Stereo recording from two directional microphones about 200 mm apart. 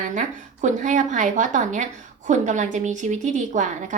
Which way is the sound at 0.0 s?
40° right (ahead or behind).